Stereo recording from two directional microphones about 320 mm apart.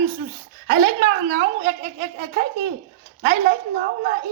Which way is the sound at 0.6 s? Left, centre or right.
Right.